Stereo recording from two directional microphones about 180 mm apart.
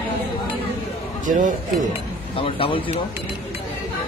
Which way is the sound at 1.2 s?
45° right (ahead or behind).